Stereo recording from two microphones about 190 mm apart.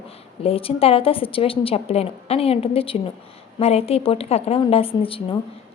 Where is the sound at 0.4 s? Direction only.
30° left (ahead or behind).